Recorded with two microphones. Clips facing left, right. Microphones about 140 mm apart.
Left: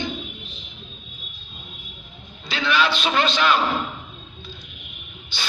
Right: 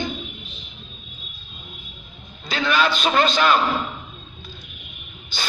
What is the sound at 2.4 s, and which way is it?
A man's voice, 45° right (ahead or behind).